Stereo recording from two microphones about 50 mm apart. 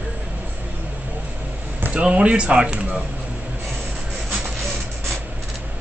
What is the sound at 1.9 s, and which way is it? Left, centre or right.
Speech, right.